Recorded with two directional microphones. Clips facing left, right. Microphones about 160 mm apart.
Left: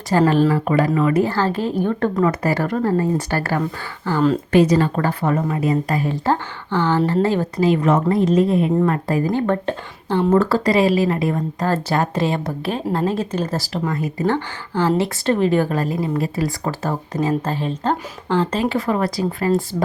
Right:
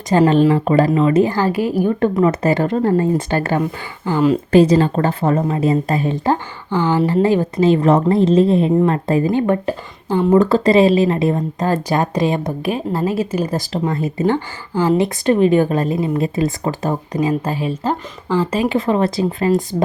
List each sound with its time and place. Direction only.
0.1 s a woman's voice: 20° right (ahead or behind)
4.5 s a woman's voice: 30° right (ahead or behind)
9.5 s a woman's voice: 10° right (ahead or behind); by 14.3 s 25° right (ahead or behind)
14.3 s a woman's voice: 10° right (ahead or behind)